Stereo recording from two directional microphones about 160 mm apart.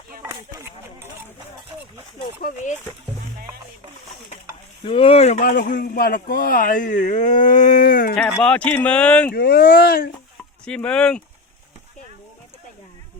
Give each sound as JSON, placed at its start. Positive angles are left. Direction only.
{"t": 4.8, "sound": "speech", "side_deg": 35}
{"t": 5.4, "sound": "a man's voice", "side_deg": 60}
{"t": 8.1, "sound": "speech", "side_deg": 5}
{"t": 9.3, "sound": "speech", "side_deg": 70}
{"t": 10.7, "sound": "speech", "side_deg": 5}